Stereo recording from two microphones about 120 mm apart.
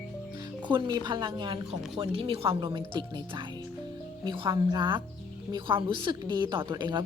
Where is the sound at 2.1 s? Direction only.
50° right (ahead or behind).